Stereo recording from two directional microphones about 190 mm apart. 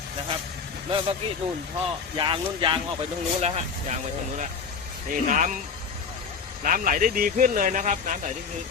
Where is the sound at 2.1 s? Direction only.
25° right (ahead or behind).